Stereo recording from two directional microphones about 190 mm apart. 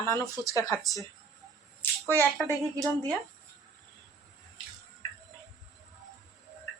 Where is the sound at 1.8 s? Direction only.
10° left (ahead or behind).